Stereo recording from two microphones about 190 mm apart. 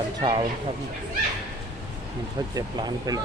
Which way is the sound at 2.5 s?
20° right (ahead or behind).